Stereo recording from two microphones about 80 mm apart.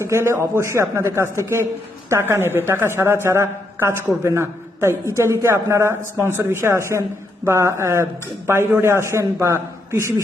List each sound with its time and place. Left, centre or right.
0.0 s a woman's voice: right